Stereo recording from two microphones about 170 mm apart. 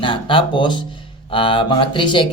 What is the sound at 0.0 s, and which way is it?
Speech, 30° left (ahead or behind).